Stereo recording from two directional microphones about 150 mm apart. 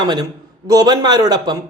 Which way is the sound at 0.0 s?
30° right (ahead or behind).